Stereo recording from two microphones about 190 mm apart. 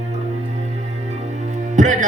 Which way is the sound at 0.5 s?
35° right (ahead or behind).